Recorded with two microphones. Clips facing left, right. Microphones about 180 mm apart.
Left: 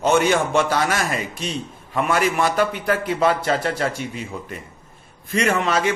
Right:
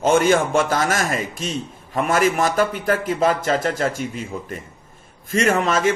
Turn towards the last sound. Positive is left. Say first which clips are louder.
# right 2 dB
turn(degrees=-40)  # may be behind; listen again after turning